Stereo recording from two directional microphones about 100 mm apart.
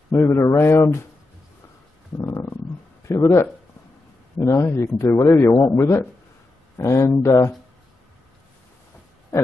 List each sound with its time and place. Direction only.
0.1 s speech: 30° left (ahead or behind)
2.1 s a sound: 35° left (ahead or behind)
3.1 s speech: 30° left (ahead or behind)